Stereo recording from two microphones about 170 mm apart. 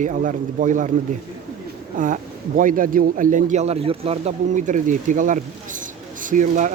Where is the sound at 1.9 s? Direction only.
50° right (ahead or behind).